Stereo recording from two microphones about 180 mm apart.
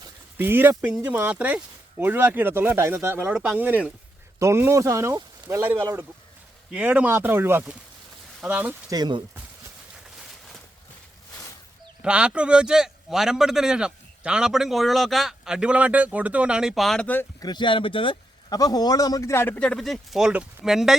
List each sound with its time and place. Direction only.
0.3 s speech: 10° right (ahead or behind)
8.9 s speech: 25° right (ahead or behind)
12.0 s a man's voice: 5° right (ahead or behind)
17.4 s speech: 25° left (ahead or behind); by 20.9 s centre (ahead or behind)